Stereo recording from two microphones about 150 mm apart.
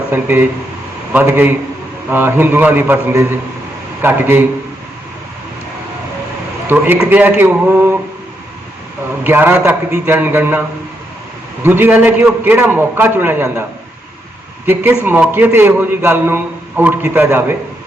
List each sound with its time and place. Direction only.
0.1 s a man's voice: 15° right (ahead or behind)
6.7 s a man's voice: 15° right (ahead or behind)
9.2 s a man's voice: 15° right (ahead or behind)
11.6 s a man's voice: 15° right (ahead or behind)
15.0 s a man's voice: 15° right (ahead or behind)